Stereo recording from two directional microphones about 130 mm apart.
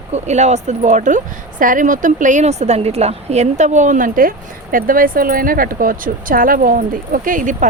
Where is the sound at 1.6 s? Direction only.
90° right.